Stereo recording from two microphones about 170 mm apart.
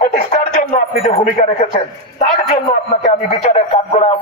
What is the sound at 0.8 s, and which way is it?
Speech, 40° left (ahead or behind).